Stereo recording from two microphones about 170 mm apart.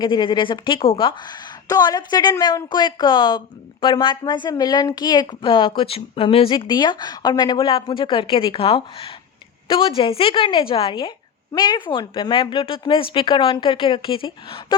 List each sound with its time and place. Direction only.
0.0 s a woman's voice: 30° left (ahead or behind)